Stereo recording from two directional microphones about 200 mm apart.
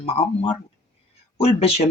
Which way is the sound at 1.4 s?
30° left (ahead or behind).